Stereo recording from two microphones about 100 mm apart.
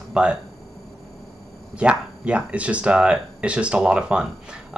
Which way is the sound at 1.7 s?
10° right (ahead or behind).